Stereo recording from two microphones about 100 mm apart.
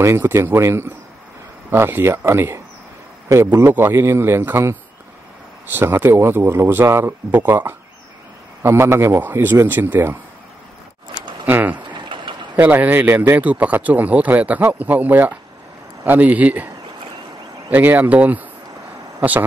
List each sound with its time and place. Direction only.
0.0 s a man's voice: 25° right (ahead or behind)
11.4 s a man's voice: 15° right (ahead or behind)
11.9 s a sound: 50° right (ahead or behind)
12.5 s a man's voice: 15° right (ahead or behind)